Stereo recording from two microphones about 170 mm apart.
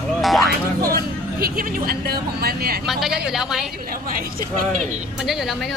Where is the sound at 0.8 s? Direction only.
60° right (ahead or behind).